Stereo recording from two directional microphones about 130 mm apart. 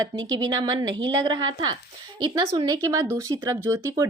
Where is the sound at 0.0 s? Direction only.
30° right (ahead or behind).